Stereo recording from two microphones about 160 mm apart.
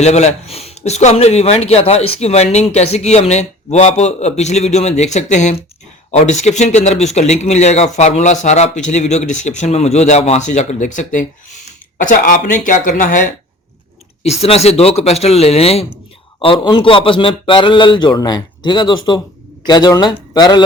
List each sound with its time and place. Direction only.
0.0 s speech: 45° left (ahead or behind)
14.3 s a man's voice: 40° left (ahead or behind)